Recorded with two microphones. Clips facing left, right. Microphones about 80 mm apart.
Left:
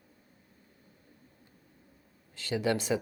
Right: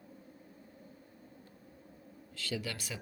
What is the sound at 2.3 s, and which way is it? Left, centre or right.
Speech, left.